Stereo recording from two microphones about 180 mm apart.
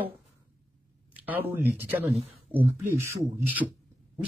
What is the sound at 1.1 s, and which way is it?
A man's voice, 10° right (ahead or behind).